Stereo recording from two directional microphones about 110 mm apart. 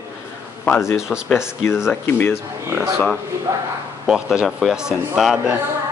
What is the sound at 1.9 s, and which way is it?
Speech, 20° left (ahead or behind).